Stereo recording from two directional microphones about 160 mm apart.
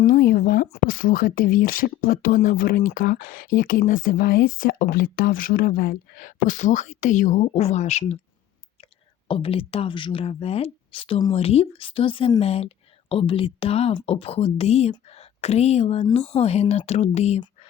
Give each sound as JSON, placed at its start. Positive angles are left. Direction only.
{"t": 0.0, "sound": "speech", "side_deg": 60}
{"t": 9.2, "sound": "speech", "side_deg": 35}